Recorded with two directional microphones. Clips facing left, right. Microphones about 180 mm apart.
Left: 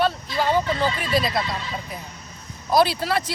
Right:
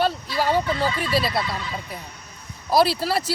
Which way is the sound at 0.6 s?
30° left (ahead or behind).